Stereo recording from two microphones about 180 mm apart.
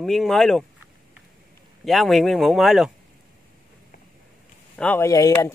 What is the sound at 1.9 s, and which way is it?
A man's voice, centre (ahead or behind).